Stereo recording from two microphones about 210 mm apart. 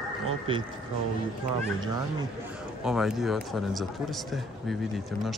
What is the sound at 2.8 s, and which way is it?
Speech, centre (ahead or behind).